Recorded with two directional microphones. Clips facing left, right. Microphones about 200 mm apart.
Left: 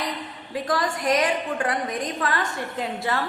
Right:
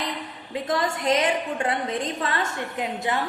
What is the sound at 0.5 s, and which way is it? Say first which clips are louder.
A woman's voice: even; 25° right (ahead or behind).